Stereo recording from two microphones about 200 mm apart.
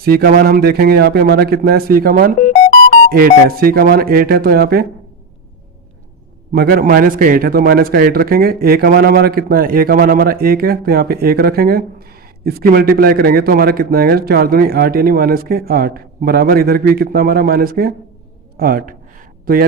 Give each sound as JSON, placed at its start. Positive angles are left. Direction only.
{"t": 0.0, "sound": "a man's voice", "side_deg": -50}
{"t": 6.5, "sound": "a man's voice", "side_deg": -50}